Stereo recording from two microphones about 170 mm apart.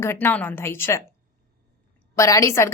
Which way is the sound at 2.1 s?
20° left (ahead or behind).